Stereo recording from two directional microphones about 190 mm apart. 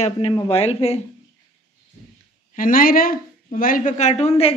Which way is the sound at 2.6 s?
45° left (ahead or behind).